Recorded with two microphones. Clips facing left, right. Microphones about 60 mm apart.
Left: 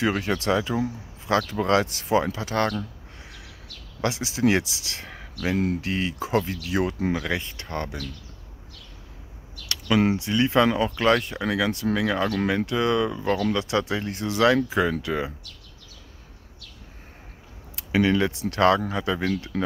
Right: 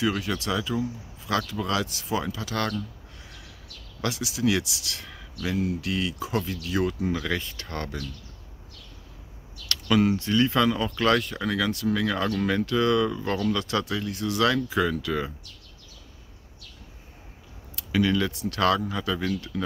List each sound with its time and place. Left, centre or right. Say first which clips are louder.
0.0 s speech: left 3 dB; left
4.0 s speech: left 3 dB; left
6.6 s speech: left 1 dB; left
10.1 s speech: left 2 dB; centre
17.7 s speech: left 2 dB; left
19.5 s speech: left 5 dB; left